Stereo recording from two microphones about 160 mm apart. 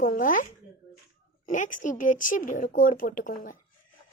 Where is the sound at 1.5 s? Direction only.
55° left (ahead or behind).